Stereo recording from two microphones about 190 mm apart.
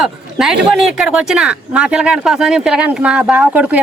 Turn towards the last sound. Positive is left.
turn(degrees=-10)  # may be behind; listen again after turning